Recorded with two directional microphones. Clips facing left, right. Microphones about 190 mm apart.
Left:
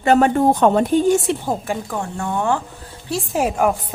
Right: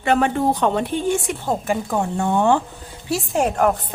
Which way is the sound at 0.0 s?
40° left (ahead or behind).